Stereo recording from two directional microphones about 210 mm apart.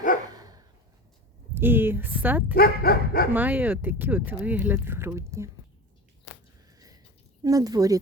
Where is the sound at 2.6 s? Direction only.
45° left (ahead or behind).